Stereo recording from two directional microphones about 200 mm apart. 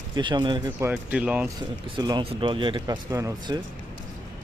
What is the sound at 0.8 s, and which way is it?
Speech, 5° right (ahead or behind).